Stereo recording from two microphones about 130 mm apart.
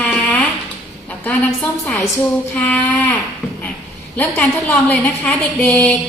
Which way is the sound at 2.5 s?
15° left (ahead or behind).